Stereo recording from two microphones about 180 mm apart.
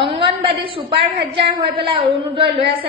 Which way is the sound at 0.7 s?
30° right (ahead or behind).